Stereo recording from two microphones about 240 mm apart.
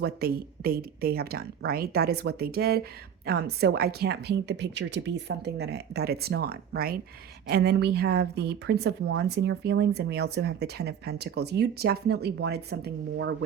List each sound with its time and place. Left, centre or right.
0.0 s speech: right